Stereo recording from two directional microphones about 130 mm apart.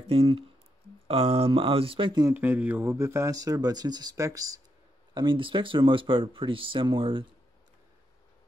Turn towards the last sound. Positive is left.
turn(degrees=-40)  # may be behind; listen again after turning